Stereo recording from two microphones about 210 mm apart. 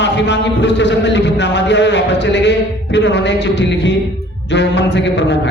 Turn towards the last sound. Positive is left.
turn(degrees=55)  # may be behind; listen again after turning